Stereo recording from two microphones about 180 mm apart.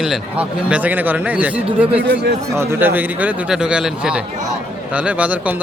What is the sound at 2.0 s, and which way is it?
Speech, 65° right (ahead or behind).